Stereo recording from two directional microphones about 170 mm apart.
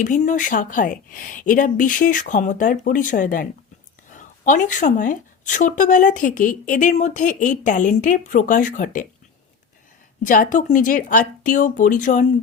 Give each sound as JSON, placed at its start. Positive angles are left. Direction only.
{"t": 0.0, "sound": "speech", "side_deg": 50}
{"t": 10.2, "sound": "speech", "side_deg": 50}